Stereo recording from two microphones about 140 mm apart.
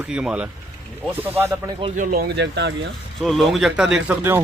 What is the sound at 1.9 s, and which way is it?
Speech, 80° right.